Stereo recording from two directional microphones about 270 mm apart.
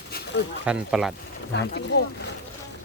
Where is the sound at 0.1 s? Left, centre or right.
Left.